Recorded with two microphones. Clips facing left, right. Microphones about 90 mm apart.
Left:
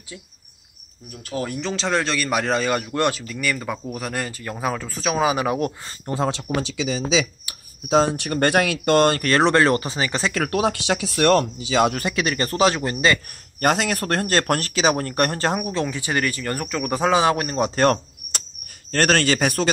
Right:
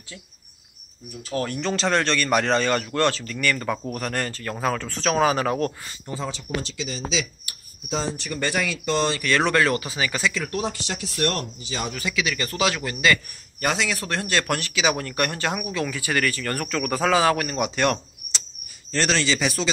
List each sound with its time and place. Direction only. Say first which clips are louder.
1.3 s a man's voice: even; 10° left (ahead or behind)
1.6 s a man's voice: right 1 dB; centre (ahead or behind)
6.1 s speech: left 7 dB; 60° left (ahead or behind)
7.9 s speech: left 9 dB; 60° left (ahead or behind)
9.4 s speech: left 5 dB; 30° left (ahead or behind)
10.3 s speech: left 6 dB; 70° left (ahead or behind); by 11.9 s 90° left
11.9 s speech: left 3 dB; 50° left (ahead or behind); by 13.2 s 30° left (ahead or behind)
13.6 s speech: left 4 dB; 50° left (ahead or behind)
18.9 s speech: left 4 dB; 55° left (ahead or behind)